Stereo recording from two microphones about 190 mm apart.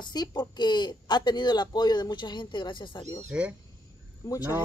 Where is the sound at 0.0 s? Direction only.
20° left (ahead or behind).